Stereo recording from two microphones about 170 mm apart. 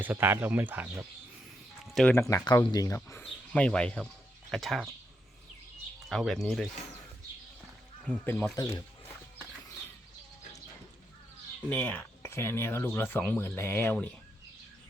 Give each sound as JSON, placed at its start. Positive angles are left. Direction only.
{"t": 0.0, "sound": "speech", "side_deg": -10}
{"t": 1.9, "sound": "speech", "side_deg": 0}
{"t": 2.1, "sound": "speech", "side_deg": 20}
{"t": 3.2, "sound": "speech", "side_deg": 5}
{"t": 6.1, "sound": "speech", "side_deg": 0}
{"t": 8.0, "sound": "speech", "side_deg": 10}
{"t": 11.7, "sound": "speech", "side_deg": 10}